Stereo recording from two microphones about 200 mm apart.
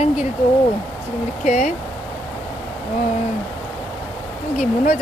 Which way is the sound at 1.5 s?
35° left (ahead or behind).